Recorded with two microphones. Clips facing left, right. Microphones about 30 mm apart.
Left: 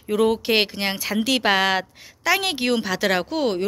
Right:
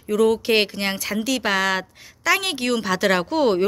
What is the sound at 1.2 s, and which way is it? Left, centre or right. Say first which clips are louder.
Speech: left 2 dB; left.